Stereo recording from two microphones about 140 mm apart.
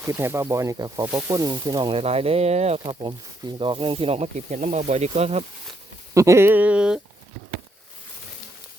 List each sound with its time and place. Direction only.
0.0 s speech: 20° right (ahead or behind); by 2.8 s 50° right (ahead or behind)
2.8 s speech: 30° right (ahead or behind); by 5.5 s 50° right (ahead or behind)
6.1 s speech: 20° right (ahead or behind)